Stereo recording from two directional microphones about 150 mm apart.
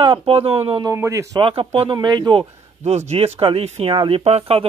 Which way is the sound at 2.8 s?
45° right (ahead or behind).